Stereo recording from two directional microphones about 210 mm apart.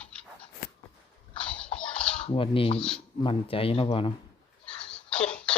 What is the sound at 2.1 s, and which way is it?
Speech, 25° left (ahead or behind).